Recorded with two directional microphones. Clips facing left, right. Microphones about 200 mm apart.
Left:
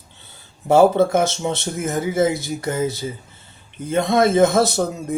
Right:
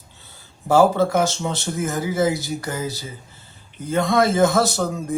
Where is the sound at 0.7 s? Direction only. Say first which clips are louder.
Left 2 dB; 25° left (ahead or behind).